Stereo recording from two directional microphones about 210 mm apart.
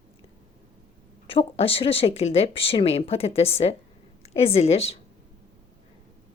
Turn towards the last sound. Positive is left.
turn(degrees=30)  # may be behind; listen again after turning